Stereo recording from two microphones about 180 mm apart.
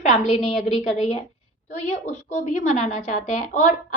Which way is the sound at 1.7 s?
40° left (ahead or behind).